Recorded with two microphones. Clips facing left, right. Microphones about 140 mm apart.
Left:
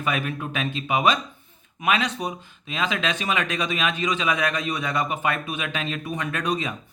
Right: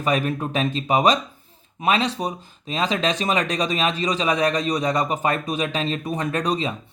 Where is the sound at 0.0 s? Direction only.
35° right (ahead or behind).